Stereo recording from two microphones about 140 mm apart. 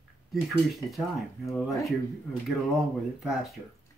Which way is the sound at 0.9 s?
Centre (ahead or behind).